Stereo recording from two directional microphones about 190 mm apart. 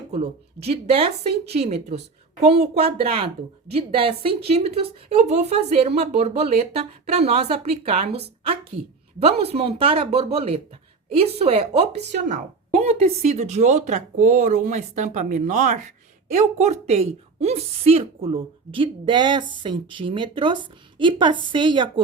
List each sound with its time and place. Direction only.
0.1 s a woman's voice: 35° right (ahead or behind)